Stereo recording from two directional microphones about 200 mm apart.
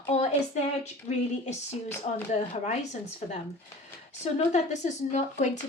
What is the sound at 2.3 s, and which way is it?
Speech, 35° left (ahead or behind).